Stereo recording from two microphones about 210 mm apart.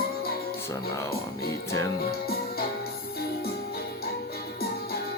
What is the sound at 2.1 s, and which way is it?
Music, 45° left (ahead or behind).